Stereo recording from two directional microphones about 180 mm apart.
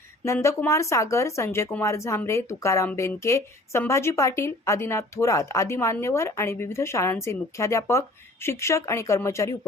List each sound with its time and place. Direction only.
0.3 s speech: 15° left (ahead or behind)